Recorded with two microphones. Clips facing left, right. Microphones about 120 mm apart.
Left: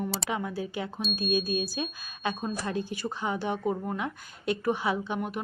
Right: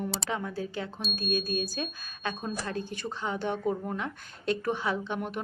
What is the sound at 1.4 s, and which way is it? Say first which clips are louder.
Speech: left 2 dB; 45° right (ahead or behind).